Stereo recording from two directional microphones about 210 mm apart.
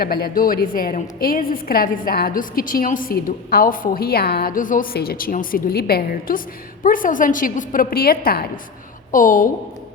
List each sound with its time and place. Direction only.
0.0 s a woman's voice: 45° left (ahead or behind)